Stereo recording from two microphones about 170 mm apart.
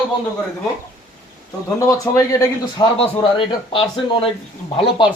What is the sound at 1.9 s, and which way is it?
Speech, 20° left (ahead or behind).